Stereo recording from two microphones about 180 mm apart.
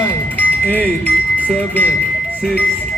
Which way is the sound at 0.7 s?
10° left (ahead or behind).